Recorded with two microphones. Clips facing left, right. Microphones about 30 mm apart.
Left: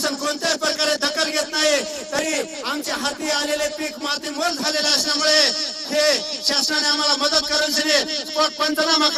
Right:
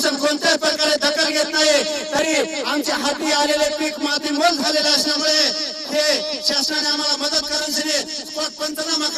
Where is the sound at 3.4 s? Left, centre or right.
Right.